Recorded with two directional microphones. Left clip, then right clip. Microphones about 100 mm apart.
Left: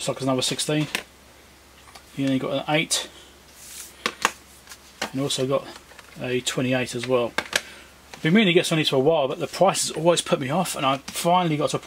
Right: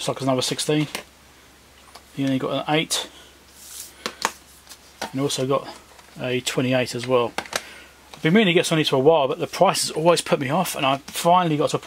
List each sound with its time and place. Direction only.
0.0 s speech: 30° right (ahead or behind)
2.1 s speech: 30° right (ahead or behind)
5.1 s speech: 30° right (ahead or behind)